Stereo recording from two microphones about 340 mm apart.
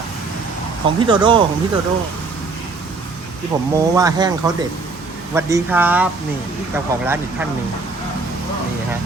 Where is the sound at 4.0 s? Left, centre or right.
Centre.